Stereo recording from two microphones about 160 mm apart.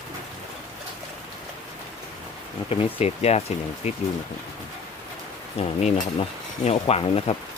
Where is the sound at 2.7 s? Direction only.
40° left (ahead or behind).